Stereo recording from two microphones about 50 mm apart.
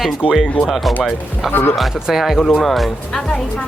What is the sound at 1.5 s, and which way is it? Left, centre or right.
Speech, left.